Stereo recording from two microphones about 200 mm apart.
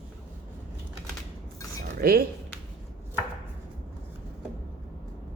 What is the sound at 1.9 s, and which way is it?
Speech, 45° right (ahead or behind).